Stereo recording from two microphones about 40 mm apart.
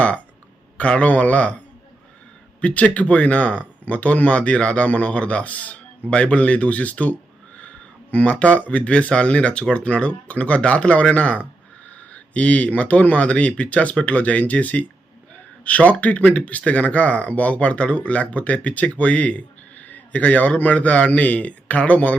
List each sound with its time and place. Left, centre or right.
0.8 s speech: left
2.6 s speech: left